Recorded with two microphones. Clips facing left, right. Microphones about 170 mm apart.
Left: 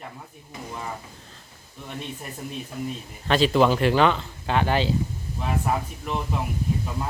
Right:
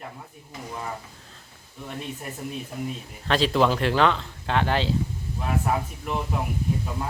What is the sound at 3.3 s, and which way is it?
Speech, centre (ahead or behind).